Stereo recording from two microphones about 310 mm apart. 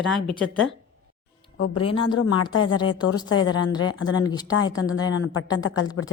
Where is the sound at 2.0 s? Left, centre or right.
Left.